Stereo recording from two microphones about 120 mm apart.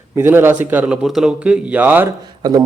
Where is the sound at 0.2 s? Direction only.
20° right (ahead or behind).